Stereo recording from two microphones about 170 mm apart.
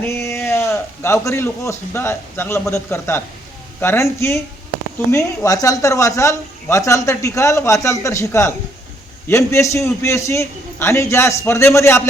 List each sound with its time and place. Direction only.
0.0 s speech: 15° left (ahead or behind)